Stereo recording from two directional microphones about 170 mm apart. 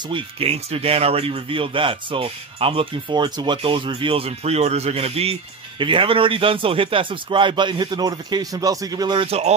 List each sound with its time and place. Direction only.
0.1 s a man's voice: 35° right (ahead or behind)